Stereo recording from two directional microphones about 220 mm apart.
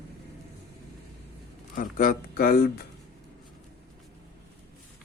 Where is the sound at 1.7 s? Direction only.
40° left (ahead or behind).